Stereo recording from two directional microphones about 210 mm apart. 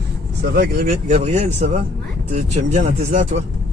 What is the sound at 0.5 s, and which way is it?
Speech, 50° right (ahead or behind).